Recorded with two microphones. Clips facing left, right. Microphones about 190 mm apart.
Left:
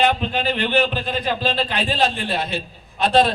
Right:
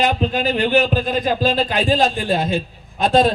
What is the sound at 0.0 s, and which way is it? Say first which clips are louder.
Speech: right 1 dB; 40° right (ahead or behind).